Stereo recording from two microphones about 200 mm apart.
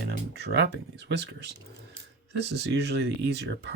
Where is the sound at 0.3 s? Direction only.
55° right (ahead or behind).